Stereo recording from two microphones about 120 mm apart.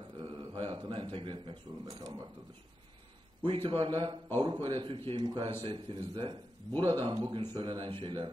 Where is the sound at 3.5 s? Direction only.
50° right (ahead or behind).